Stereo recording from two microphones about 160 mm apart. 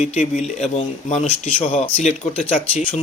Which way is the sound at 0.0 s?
45° left (ahead or behind).